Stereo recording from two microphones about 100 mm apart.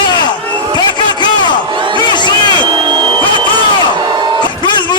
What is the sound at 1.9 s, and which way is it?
Crowd, 45° left (ahead or behind).